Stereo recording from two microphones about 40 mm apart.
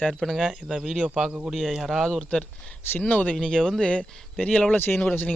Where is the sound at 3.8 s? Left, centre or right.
Left.